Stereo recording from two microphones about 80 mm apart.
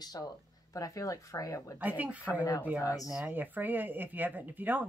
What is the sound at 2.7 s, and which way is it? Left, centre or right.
Speech, left.